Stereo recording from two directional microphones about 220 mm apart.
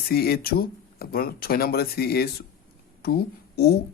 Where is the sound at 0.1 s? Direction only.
45° left (ahead or behind).